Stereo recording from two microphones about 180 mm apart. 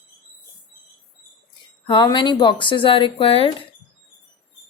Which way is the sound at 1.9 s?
25° left (ahead or behind).